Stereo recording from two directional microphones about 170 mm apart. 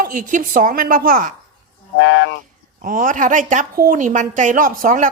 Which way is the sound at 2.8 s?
50° right (ahead or behind).